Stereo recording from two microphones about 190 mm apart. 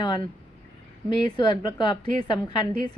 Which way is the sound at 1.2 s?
25° left (ahead or behind).